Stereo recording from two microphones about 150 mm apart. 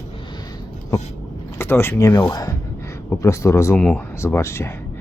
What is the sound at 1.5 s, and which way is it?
A man's voice, 15° left (ahead or behind).